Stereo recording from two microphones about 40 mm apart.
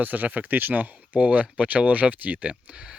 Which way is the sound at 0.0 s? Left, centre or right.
Right.